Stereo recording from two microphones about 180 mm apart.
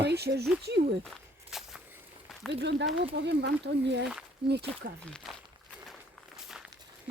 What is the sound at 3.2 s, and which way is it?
Speech, 75° right (ahead or behind).